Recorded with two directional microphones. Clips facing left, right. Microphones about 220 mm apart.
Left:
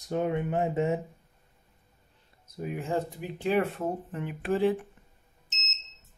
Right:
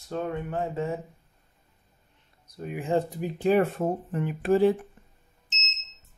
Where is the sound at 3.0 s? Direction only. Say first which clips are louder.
Right 5 dB; 40° right (ahead or behind).